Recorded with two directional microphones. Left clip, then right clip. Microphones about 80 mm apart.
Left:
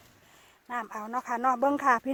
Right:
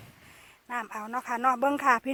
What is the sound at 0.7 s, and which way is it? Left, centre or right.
Speech, left.